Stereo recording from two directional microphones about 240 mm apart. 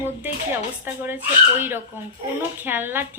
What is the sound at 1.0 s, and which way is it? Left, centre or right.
A woman's voice, centre.